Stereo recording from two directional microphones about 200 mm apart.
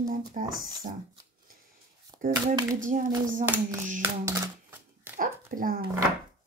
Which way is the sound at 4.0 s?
15° right (ahead or behind).